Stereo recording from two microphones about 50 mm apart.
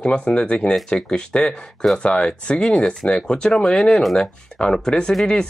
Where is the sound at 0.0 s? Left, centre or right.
Centre.